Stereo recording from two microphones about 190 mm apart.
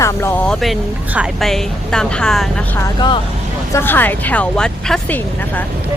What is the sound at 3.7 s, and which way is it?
Speech, 10° left (ahead or behind).